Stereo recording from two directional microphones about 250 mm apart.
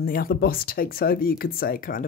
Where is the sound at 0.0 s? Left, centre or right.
Left.